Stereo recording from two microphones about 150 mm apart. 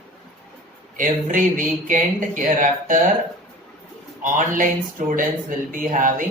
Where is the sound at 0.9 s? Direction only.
60° right (ahead or behind).